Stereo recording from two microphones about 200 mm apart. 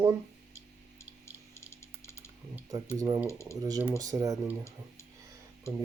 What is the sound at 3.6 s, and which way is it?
Speech, 20° right (ahead or behind).